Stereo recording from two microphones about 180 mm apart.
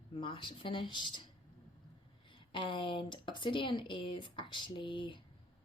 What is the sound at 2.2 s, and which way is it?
Speech, 25° left (ahead or behind).